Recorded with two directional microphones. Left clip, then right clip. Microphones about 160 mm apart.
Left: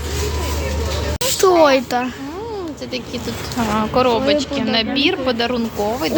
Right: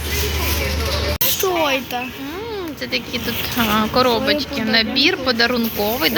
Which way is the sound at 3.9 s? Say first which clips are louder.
Left 3 dB; 5° left (ahead or behind).